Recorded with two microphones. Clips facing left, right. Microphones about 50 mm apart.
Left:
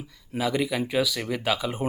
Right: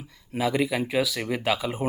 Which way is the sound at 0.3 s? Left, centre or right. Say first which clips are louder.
Right 1 dB; centre.